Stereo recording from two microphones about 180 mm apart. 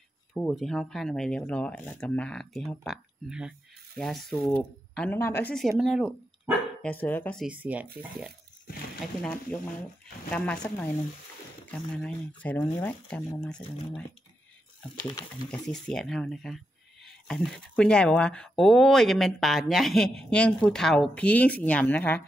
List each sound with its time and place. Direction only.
0.3 s speech: centre (ahead or behind)
7.4 s speech: 10° right (ahead or behind)
9.0 s speech: 5° left (ahead or behind)
11.6 s speech: 5° left (ahead or behind)
15.0 s speech: 25° left (ahead or behind)
15.6 s speech: centre (ahead or behind)